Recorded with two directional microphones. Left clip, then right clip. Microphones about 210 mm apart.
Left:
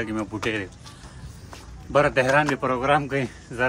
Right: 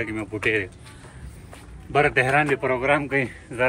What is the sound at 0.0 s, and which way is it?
Speech, 10° left (ahead or behind).